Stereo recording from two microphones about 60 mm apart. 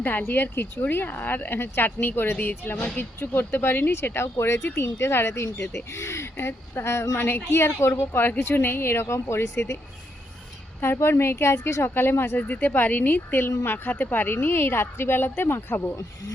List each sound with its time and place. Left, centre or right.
0.0 s speech: left
2.7 s speech: left
3.0 s speech: left
7.3 s speech: left
10.8 s speech: left
12.4 s speech: left